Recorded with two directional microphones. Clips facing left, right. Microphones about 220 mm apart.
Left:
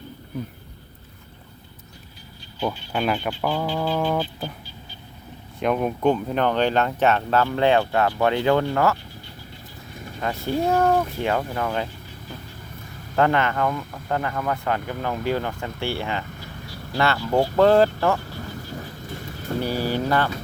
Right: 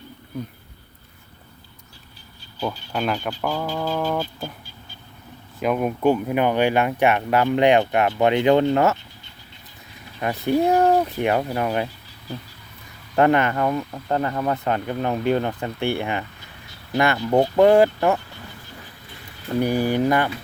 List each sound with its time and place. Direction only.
2.9 s music: centre (ahead or behind)
5.5 s speech: 5° right (ahead or behind); by 9.0 s 20° right (ahead or behind)
10.2 s speech: 15° right (ahead or behind)
13.1 s speech: 20° right (ahead or behind)
18.2 s vehicle: 45° left (ahead or behind)
19.6 s speech: 15° right (ahead or behind)